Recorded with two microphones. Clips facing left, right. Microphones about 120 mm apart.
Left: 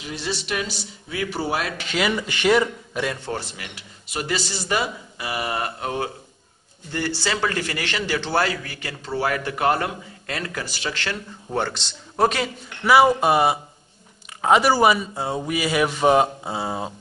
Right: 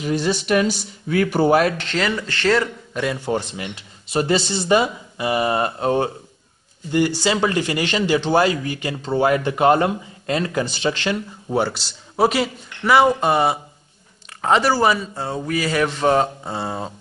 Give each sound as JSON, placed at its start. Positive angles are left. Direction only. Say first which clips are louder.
{"t": 0.0, "sound": "speech", "louder": "right 9 dB", "side_deg": -45}
{"t": 1.8, "sound": "speech", "louder": "right 1 dB", "side_deg": 10}
{"t": 3.3, "sound": "a man's voice", "louder": "right 7 dB", "side_deg": -20}
{"t": 6.9, "sound": "a man's voice", "louder": "right 7 dB", "side_deg": -15}
{"t": 11.5, "sound": "a man's voice", "louder": "right 4 dB", "side_deg": -10}